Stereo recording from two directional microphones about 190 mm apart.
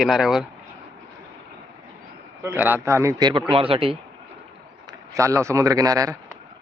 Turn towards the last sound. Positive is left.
turn(degrees=-20)  # may be behind; listen again after turning